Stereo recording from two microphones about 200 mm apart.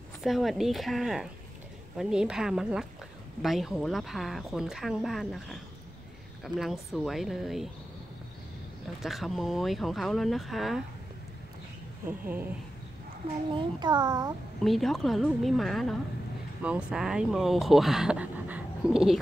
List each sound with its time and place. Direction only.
0.2 s speech: centre (ahead or behind)
9.0 s speech: centre (ahead or behind)
12.1 s speech: 10° right (ahead or behind)
13.5 s a child's voice: 25° right (ahead or behind)
14.6 s speech: centre (ahead or behind)